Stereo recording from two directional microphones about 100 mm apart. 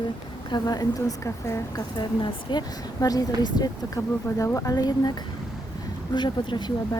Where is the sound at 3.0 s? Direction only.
40° left (ahead or behind).